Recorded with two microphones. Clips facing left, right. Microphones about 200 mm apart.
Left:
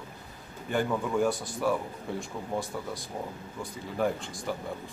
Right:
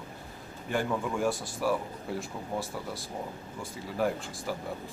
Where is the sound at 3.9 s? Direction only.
5° right (ahead or behind).